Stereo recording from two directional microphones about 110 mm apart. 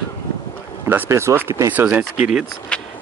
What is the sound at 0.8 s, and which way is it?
Speech, 20° right (ahead or behind).